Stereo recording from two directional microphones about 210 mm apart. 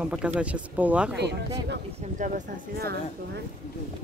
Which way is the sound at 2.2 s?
35° right (ahead or behind).